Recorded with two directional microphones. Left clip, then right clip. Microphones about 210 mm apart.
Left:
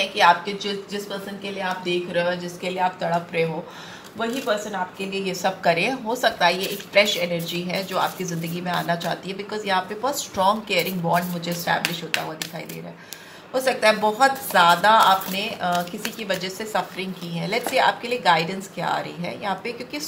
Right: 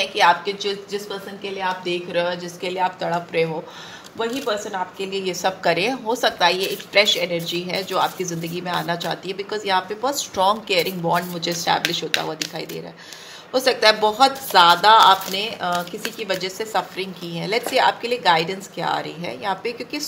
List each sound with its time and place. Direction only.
0.0 s a woman's voice: 55° right (ahead or behind)
13.5 s a woman's voice: 50° right (ahead or behind)